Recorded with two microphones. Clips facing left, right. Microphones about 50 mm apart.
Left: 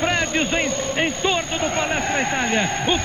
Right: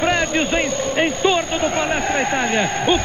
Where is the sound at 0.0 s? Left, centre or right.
Right.